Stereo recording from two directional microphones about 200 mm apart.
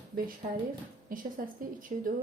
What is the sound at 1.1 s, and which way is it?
Speech, 45° right (ahead or behind).